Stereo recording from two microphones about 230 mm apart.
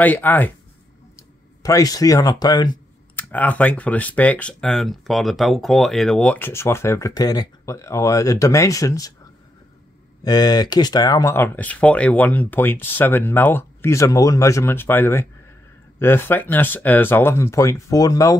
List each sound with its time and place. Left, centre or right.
0.0 s speech: centre
1.6 s speech: centre
3.2 s speech: centre
10.2 s speech: centre